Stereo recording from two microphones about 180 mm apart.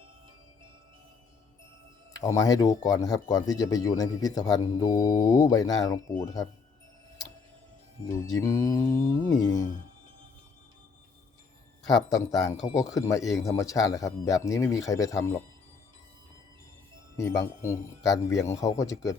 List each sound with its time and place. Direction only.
2.1 s speech: 20° left (ahead or behind)
8.0 s speech: 15° left (ahead or behind)
11.8 s speech: centre (ahead or behind)
12.0 s speech: 20° left (ahead or behind)
17.2 s speech: 15° left (ahead or behind)